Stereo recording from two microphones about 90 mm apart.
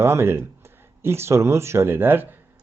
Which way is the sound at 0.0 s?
30° right (ahead or behind).